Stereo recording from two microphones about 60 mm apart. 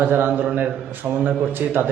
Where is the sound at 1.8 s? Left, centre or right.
Right.